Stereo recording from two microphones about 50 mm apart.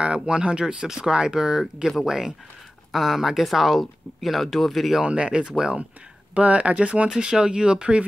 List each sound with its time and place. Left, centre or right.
0.0 s speech: right; by 5.0 s centre
5.0 s speech: right